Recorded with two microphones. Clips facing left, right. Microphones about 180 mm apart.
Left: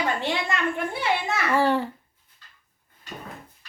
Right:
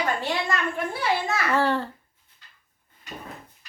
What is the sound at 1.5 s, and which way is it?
Speech, 15° left (ahead or behind).